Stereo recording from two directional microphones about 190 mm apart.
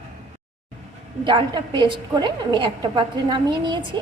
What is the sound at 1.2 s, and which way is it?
A woman's voice, 25° right (ahead or behind).